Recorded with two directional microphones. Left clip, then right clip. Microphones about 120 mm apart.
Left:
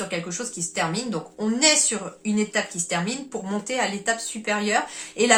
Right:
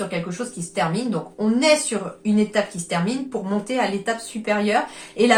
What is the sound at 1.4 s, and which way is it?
A woman's voice, 20° left (ahead or behind).